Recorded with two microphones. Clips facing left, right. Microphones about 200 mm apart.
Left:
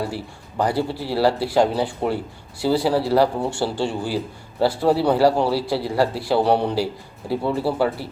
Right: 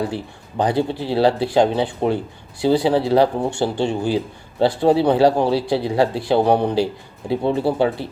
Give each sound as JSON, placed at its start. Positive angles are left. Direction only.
{"t": 0.0, "sound": "speech", "side_deg": -20}